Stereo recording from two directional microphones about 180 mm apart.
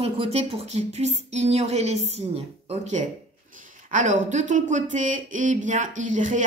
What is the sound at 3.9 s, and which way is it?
Speech, 40° right (ahead or behind).